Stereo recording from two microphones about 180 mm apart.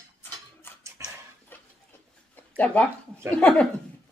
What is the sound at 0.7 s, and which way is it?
Tick-tock, 10° left (ahead or behind).